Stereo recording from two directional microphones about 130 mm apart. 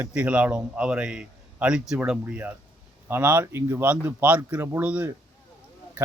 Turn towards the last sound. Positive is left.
turn(degrees=-10)  # may be behind; listen again after turning